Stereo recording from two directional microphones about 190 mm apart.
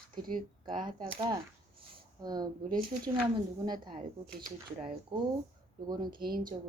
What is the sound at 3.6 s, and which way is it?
Speech, 20° right (ahead or behind).